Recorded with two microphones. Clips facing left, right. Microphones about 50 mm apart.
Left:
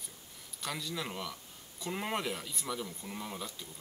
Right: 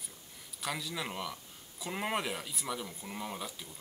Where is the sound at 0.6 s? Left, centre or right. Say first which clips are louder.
Right 1 dB; centre.